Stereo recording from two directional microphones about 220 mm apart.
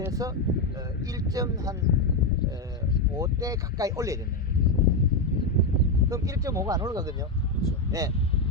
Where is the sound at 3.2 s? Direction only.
15° right (ahead or behind).